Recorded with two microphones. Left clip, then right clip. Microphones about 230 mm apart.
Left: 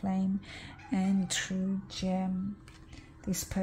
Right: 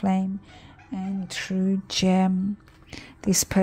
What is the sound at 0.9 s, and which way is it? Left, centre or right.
Speech, centre.